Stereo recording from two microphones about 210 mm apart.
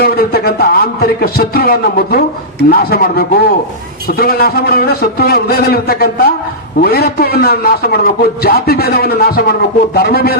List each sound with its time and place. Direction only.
0.0 s a man's voice: 45° left (ahead or behind)